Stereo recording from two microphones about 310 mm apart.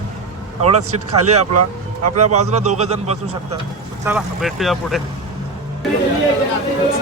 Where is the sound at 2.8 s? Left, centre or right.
Right.